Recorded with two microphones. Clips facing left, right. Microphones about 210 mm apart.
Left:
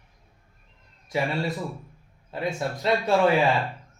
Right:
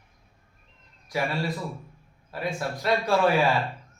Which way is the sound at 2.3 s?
20° left (ahead or behind).